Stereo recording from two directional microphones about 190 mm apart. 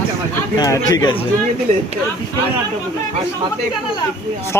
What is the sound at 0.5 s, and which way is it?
Speech, 20° left (ahead or behind).